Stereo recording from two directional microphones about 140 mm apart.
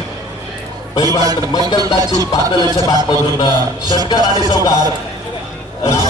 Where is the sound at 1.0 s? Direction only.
30° right (ahead or behind).